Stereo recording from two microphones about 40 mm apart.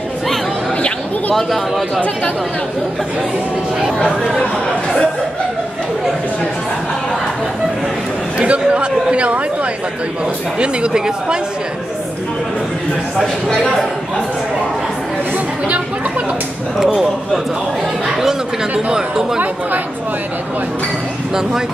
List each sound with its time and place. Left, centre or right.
8.4 s speech: right
10.6 s speech: right
18.9 s speech: centre